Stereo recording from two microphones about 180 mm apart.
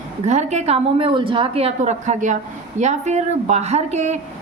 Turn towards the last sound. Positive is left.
turn(degrees=-40)  # may be behind; listen again after turning